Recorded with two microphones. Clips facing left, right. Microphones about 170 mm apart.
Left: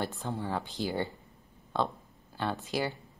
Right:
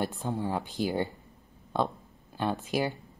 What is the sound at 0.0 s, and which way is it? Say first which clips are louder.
Speech: right 3 dB; 15° right (ahead or behind).